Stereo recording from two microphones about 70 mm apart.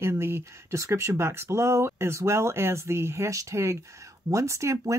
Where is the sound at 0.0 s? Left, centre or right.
Right.